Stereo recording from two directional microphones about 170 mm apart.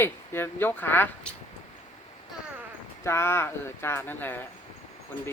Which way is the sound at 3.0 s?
15° left (ahead or behind).